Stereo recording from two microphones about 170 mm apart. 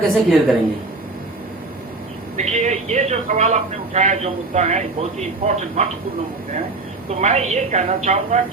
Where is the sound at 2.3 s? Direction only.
45° right (ahead or behind).